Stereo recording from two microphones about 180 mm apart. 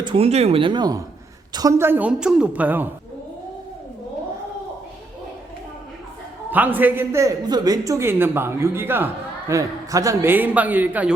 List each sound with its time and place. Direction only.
0.0 s a man's voice: 30° right (ahead or behind); by 2.9 s 10° right (ahead or behind)
6.5 s a man's voice: 10° right (ahead or behind)